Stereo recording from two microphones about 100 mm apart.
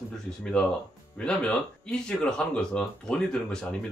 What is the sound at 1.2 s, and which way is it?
Speech, 10° left (ahead or behind).